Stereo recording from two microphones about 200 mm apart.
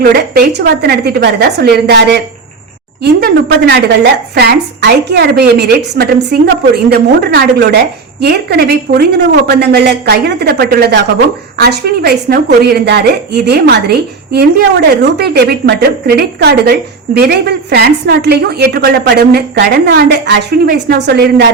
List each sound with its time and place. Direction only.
0.0 s a woman's voice: 55° right (ahead or behind)